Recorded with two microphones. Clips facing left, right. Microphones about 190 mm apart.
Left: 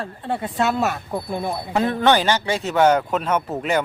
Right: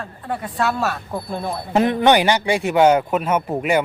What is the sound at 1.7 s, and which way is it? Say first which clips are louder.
Speech: right 3 dB; 15° right (ahead or behind).